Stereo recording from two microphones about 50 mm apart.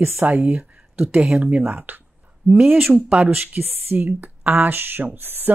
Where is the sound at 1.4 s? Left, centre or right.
Right.